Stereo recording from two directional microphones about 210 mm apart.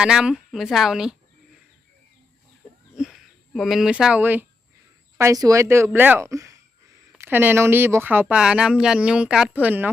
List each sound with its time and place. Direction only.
0.0 s a woman's voice: 5° right (ahead or behind)
2.9 s a sound: centre (ahead or behind)
5.1 s speech: 15° right (ahead or behind)